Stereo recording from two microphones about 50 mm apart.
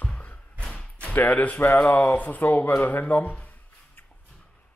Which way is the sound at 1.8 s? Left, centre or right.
Left.